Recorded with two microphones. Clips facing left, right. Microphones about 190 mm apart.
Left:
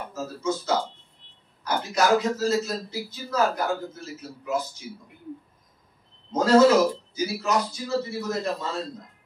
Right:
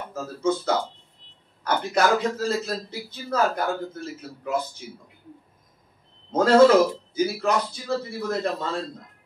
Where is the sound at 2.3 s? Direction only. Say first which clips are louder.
Left 1 dB; 55° right (ahead or behind).